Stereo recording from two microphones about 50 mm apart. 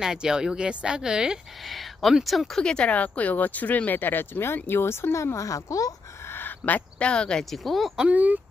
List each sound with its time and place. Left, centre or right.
0.0 s speech: centre
1.7 s a sound: centre
2.2 s speech: centre
2.6 s speech: centre
2.9 s speech: left
6.6 s speech: left
7.1 s speech: centre
7.5 s speech: centre
8.1 s speech: right